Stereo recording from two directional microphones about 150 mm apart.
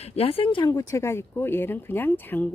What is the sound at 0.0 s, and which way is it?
Speech, 40° left (ahead or behind).